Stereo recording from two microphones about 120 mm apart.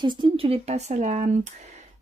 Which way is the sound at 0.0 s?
40° right (ahead or behind).